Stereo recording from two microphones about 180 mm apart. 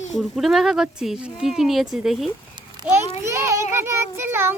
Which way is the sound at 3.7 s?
15° right (ahead or behind).